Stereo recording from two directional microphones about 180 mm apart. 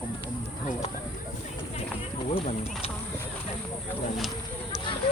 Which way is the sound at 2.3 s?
35° left (ahead or behind).